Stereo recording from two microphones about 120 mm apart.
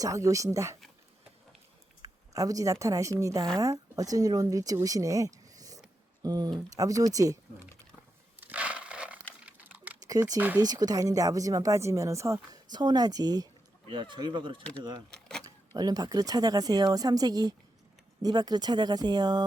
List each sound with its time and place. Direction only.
0.0 s speech: 25° right (ahead or behind)
2.0 s speech: 30° right (ahead or behind)
8.4 s a sound: 10° right (ahead or behind)
10.0 s speech: 30° right (ahead or behind)
12.7 s speech: 35° right (ahead or behind)
15.1 s keys jangling: 5° left (ahead or behind)
15.4 s speech: 30° right (ahead or behind)